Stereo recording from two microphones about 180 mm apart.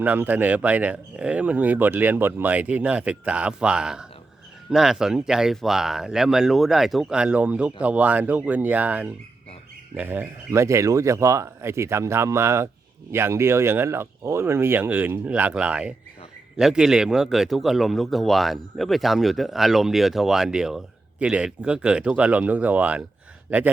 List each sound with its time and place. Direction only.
0.0 s speech: 10° right (ahead or behind)